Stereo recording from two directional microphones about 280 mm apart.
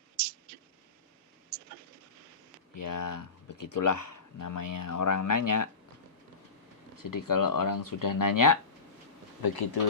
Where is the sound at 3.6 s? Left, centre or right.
Left.